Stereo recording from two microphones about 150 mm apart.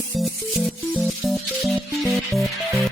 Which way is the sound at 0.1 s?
Centre (ahead or behind).